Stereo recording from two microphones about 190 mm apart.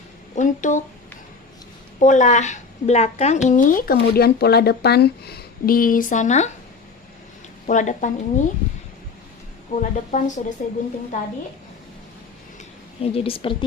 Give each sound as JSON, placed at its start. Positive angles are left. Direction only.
{"t": 0.3, "sound": "a woman's voice", "side_deg": 40}
{"t": 2.0, "sound": "a woman's voice", "side_deg": 40}
{"t": 3.5, "sound": "speech", "side_deg": 45}
{"t": 7.7, "sound": "a woman's voice", "side_deg": 40}
{"t": 9.8, "sound": "a woman's voice", "side_deg": 40}
{"t": 13.0, "sound": "a woman's voice", "side_deg": 30}